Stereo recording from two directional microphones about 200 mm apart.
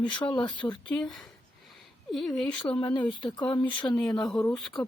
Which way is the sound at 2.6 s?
25° left (ahead or behind).